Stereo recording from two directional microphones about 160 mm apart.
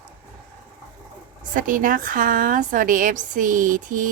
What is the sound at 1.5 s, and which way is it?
A woman's voice, 55° right (ahead or behind).